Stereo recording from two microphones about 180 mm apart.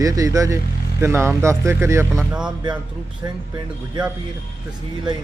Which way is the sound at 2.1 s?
5° right (ahead or behind).